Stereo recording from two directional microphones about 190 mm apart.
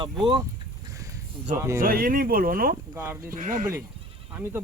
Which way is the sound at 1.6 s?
15° right (ahead or behind).